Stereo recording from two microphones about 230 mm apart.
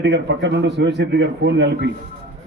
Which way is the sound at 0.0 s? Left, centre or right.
Right.